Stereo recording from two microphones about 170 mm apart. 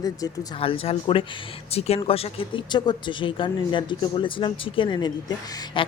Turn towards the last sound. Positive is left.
turn(degrees=30)  # may be behind; listen again after turning